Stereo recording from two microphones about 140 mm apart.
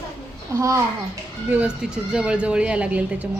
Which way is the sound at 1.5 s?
10° right (ahead or behind).